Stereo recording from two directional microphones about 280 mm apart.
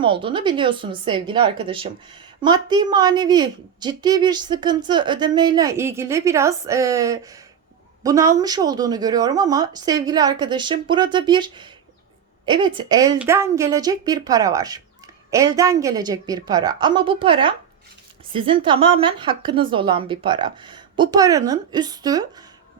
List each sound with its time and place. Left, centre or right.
0.0 s a woman's voice: centre